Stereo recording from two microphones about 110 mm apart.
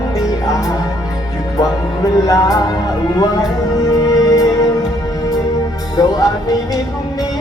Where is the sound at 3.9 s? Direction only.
35° left (ahead or behind).